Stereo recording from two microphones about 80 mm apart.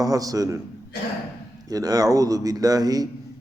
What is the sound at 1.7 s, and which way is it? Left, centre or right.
A man's voice, right.